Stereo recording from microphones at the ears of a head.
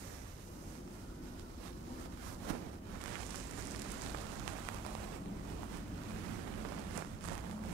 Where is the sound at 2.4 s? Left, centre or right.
Right.